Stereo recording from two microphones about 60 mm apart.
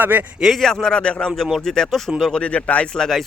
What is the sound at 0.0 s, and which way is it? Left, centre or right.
Speech, right.